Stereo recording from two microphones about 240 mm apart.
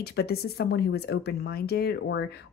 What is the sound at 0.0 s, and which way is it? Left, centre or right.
Speech, left.